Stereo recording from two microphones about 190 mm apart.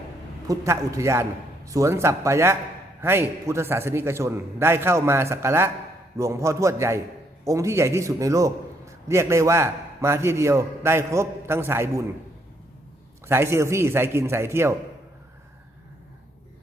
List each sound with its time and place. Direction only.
0.4 s a man's voice: 15° right (ahead or behind)
13.2 s a man's voice: 15° right (ahead or behind)